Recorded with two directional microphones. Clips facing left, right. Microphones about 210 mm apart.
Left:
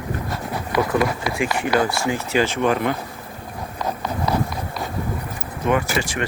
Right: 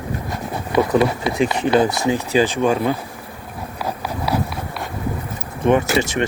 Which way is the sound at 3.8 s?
5° right (ahead or behind).